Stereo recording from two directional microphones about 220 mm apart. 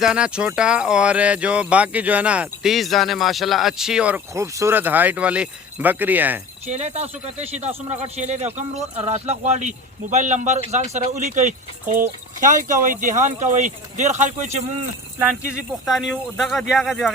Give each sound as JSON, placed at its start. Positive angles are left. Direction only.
{"t": 0.0, "sound": "speech", "side_deg": -5}
{"t": 6.7, "sound": "a man's voice", "side_deg": -30}
{"t": 15.9, "sound": "speech", "side_deg": 0}